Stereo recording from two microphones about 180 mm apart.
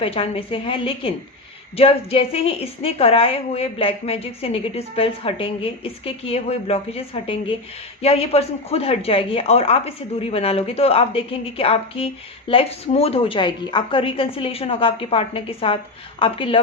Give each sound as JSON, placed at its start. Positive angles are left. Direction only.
{"t": 0.0, "sound": "a woman's voice", "side_deg": 30}